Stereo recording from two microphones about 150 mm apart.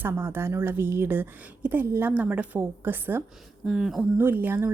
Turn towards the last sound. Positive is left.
turn(degrees=-15)  # may be behind; listen again after turning